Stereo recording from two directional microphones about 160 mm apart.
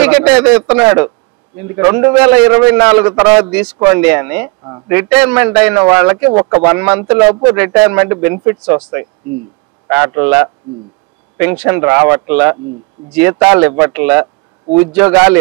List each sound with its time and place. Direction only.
0.0 s a man's voice: 10° right (ahead or behind)
14.2 s a sound: 25° right (ahead or behind)
15.0 s a man's voice: 15° right (ahead or behind)